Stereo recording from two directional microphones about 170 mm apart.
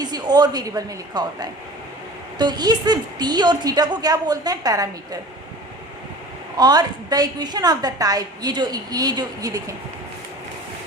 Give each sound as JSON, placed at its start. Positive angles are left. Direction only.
{"t": 0.0, "sound": "a woman's voice", "side_deg": -25}
{"t": 6.6, "sound": "a woman's voice", "side_deg": -25}